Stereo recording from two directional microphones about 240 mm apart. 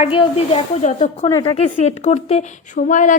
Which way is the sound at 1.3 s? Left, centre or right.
Centre.